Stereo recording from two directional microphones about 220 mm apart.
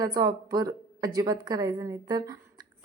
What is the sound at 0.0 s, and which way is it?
A woman's voice, 15° right (ahead or behind).